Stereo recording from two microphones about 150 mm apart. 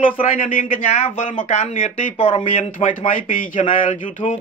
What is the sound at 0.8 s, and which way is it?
Speech, 40° left (ahead or behind).